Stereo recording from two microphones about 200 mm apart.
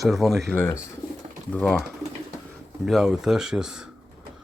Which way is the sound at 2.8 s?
Centre (ahead or behind).